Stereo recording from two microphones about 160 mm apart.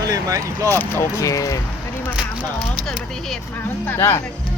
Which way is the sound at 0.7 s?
15° left (ahead or behind).